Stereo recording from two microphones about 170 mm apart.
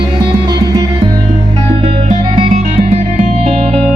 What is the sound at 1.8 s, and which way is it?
Music, 35° right (ahead or behind).